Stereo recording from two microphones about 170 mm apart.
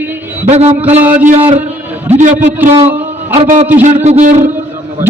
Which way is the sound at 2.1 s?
45° right (ahead or behind).